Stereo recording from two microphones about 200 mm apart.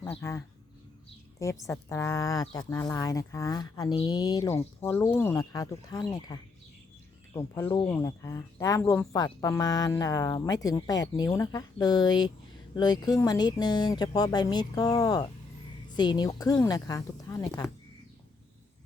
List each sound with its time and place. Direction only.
0.1 s speech: 15° left (ahead or behind)